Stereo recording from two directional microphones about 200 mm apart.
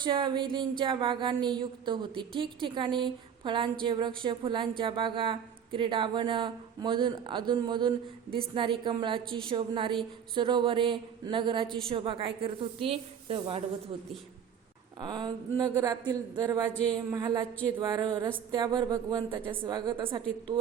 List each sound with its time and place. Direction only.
0.0 s speech: 25° right (ahead or behind)
15.0 s speech: 20° right (ahead or behind)